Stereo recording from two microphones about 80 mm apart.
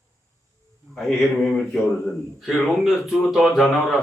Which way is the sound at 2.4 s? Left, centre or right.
Centre.